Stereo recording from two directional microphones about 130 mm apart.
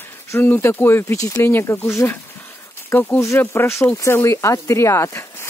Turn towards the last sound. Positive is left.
turn(degrees=25)  # may be behind; listen again after turning